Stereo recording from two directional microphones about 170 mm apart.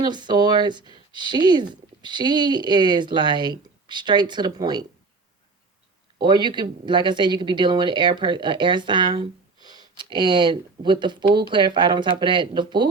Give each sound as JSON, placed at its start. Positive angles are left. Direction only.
{"t": 0.0, "sound": "speech", "side_deg": -25}
{"t": 6.1, "sound": "speech", "side_deg": -25}